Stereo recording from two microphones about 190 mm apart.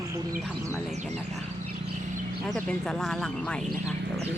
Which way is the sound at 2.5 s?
5° left (ahead or behind).